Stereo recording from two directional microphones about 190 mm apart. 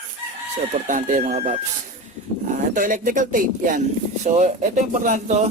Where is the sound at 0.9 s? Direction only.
40° right (ahead or behind).